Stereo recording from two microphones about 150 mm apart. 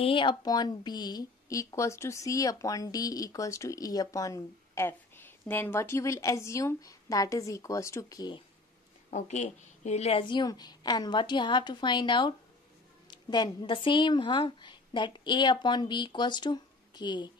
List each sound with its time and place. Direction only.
0.0 s speech: 35° left (ahead or behind)
9.1 s a woman's voice: 50° left (ahead or behind); by 17.3 s 30° left (ahead or behind)